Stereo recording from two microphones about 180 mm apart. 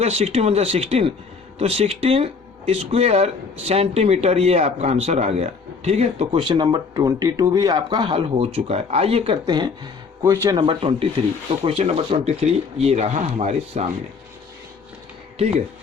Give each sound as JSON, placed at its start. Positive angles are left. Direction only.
{"t": 0.0, "sound": "speech", "side_deg": -35}
{"t": 10.2, "sound": "speech", "side_deg": -15}
{"t": 10.6, "sound": "speech", "side_deg": -30}